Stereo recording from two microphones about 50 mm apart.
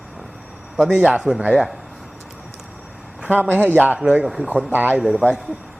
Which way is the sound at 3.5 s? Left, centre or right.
Right.